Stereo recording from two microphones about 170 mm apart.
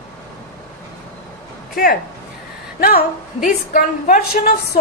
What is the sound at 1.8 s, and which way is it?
Speech, 65° left (ahead or behind).